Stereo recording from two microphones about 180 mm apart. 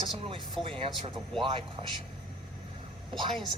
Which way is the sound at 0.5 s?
30° right (ahead or behind).